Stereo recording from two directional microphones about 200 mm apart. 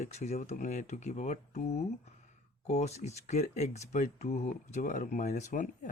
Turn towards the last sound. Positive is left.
turn(degrees=40)  # may be behind; listen again after turning